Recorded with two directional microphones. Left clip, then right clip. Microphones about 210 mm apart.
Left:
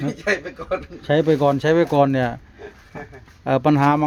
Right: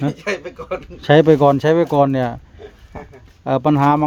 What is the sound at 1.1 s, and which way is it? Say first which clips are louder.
Speech: right 6 dB; 20° right (ahead or behind).